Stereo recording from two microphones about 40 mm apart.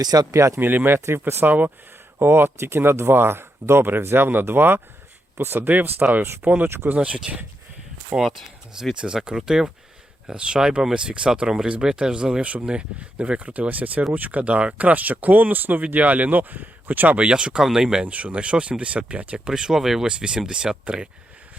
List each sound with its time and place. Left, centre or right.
0.6 s speech: right
1.5 s speech: right
2.1 s speech: right
5.4 s speech: right
5.6 s speech: right
8.2 s speech: centre
9.0 s speech: right
12.4 s speech: right
17.2 s speech: right
17.6 s speech: centre
18.0 s speech: right
19.5 s speech: centre
20.1 s speech: right